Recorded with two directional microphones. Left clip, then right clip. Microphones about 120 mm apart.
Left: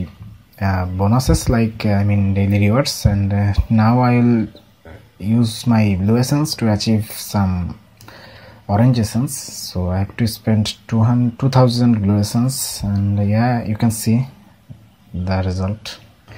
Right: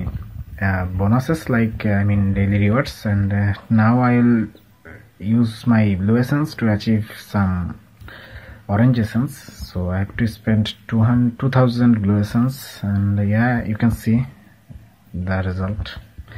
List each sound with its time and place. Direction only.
0.6 s speech: 35° left (ahead or behind)
7.4 s speech: 20° left (ahead or behind)
8.6 s speech: 30° left (ahead or behind)
15.2 s speech: 35° left (ahead or behind)